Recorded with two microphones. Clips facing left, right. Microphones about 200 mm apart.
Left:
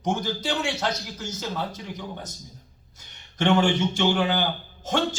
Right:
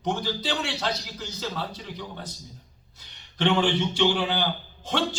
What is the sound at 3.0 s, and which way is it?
Speech, 45° left (ahead or behind).